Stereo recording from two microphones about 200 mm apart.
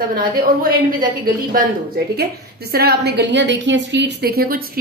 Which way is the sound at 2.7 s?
50° right (ahead or behind).